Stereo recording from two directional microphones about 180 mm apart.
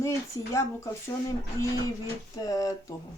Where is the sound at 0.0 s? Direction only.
15° left (ahead or behind).